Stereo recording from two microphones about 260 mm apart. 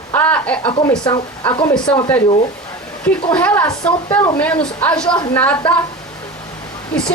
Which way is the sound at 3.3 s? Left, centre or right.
Centre.